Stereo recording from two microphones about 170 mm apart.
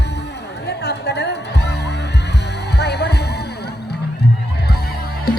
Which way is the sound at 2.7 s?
75° left (ahead or behind).